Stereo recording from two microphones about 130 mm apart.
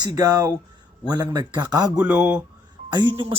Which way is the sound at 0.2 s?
25° right (ahead or behind).